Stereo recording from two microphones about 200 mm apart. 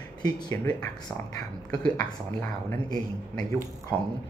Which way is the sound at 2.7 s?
20° left (ahead or behind).